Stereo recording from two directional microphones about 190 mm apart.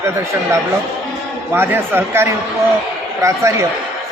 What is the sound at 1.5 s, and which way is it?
Speech, 10° right (ahead or behind).